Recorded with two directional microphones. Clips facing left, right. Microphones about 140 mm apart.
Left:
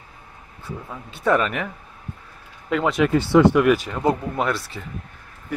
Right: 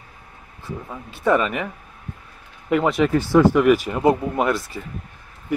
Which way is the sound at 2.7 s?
5° right (ahead or behind).